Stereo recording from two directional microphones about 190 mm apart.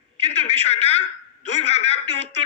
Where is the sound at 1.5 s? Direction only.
35° left (ahead or behind).